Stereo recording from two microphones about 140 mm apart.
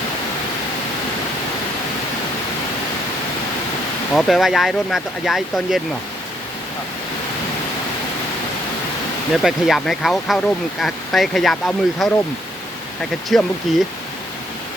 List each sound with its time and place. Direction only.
4.1 s speech: centre (ahead or behind)
9.3 s speech: centre (ahead or behind)
13.3 s speech: 5° left (ahead or behind)